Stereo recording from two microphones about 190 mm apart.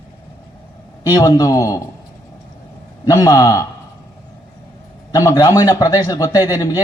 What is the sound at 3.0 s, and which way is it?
Speech, 20° left (ahead or behind).